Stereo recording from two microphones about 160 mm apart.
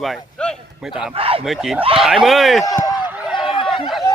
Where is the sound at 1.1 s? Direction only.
35° right (ahead or behind).